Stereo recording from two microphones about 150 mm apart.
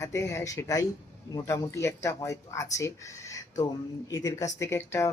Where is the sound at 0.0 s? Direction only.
20° left (ahead or behind).